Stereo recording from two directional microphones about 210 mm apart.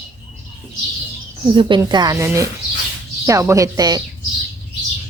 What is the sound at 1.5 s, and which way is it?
A woman's voice, 25° right (ahead or behind).